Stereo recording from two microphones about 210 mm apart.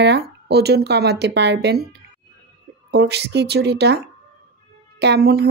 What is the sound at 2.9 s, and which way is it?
A woman's voice, 50° right (ahead or behind).